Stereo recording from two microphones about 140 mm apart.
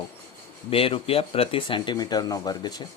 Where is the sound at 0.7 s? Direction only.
40° left (ahead or behind).